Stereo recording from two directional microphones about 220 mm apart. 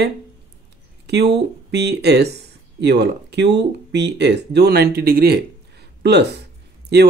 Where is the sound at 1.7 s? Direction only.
50° right (ahead or behind).